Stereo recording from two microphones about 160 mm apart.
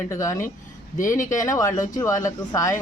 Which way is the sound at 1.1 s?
55° left (ahead or behind).